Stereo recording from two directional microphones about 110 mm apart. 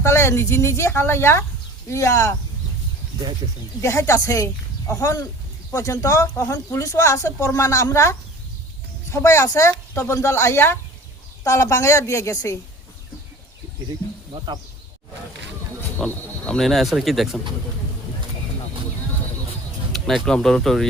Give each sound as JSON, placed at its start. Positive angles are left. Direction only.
{"t": 0.0, "sound": "speech", "side_deg": 25}
{"t": 3.8, "sound": "speech", "side_deg": 25}
{"t": 14.3, "sound": "speech", "side_deg": -45}
{"t": 16.0, "sound": "speech", "side_deg": 0}
{"t": 19.9, "sound": "speech", "side_deg": 5}